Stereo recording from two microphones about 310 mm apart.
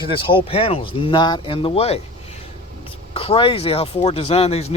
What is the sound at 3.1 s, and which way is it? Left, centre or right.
Speech, centre.